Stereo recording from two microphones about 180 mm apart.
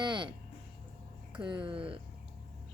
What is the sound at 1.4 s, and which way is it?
Speech, 25° right (ahead or behind).